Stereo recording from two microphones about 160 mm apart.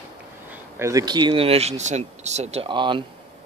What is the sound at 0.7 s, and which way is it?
Speech, 20° right (ahead or behind).